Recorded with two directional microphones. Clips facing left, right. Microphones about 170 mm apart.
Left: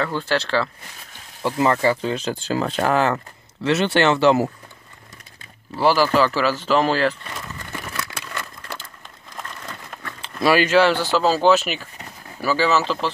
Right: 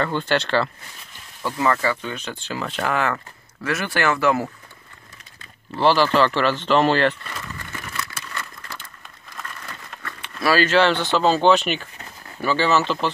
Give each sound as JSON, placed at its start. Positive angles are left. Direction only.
{"t": 0.0, "sound": "speech", "side_deg": 0}
{"t": 1.4, "sound": "speech", "side_deg": 30}
{"t": 5.8, "sound": "speech", "side_deg": 10}
{"t": 10.2, "sound": "speech", "side_deg": 20}